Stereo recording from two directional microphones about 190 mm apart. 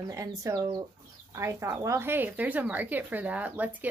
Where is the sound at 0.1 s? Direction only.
15° right (ahead or behind).